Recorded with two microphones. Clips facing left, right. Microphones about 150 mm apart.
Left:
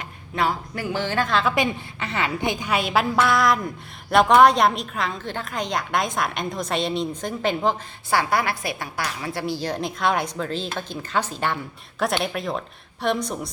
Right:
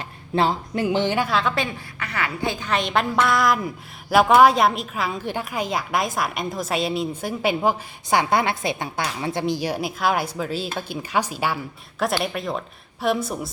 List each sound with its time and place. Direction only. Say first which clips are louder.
0.3 s speech: right 3 dB; 25° right (ahead or behind)
1.3 s a woman's voice: left 1 dB; centre (ahead or behind)
1.5 s a woman's voice: left 3 dB; 20° left (ahead or behind); by 13.5 s 5° right (ahead or behind)